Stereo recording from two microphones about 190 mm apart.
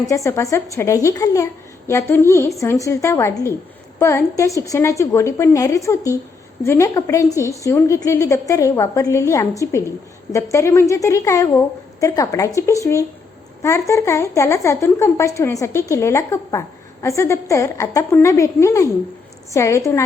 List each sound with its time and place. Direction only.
0.1 s speech: 15° left (ahead or behind)